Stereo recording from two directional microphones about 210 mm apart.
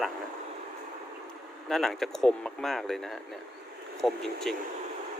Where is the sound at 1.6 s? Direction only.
Centre (ahead or behind).